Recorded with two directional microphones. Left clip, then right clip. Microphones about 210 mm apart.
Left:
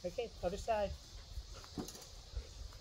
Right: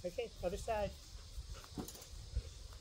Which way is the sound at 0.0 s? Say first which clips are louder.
Left 1 dB; 5° right (ahead or behind).